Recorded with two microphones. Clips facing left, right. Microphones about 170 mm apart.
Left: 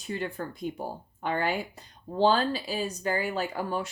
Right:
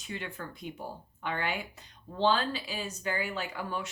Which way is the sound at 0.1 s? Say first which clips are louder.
Left 7 dB; 35° left (ahead or behind).